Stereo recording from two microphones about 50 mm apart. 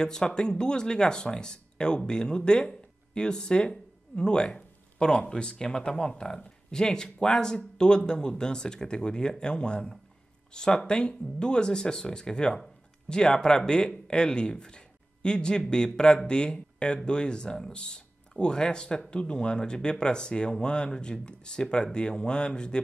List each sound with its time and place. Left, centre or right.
0.0 s speech: centre